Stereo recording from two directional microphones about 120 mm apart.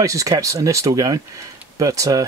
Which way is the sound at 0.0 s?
30° right (ahead or behind).